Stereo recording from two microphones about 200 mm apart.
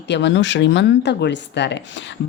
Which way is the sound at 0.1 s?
60° left (ahead or behind).